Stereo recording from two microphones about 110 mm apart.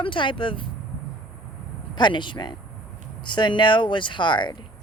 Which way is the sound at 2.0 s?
45° left (ahead or behind).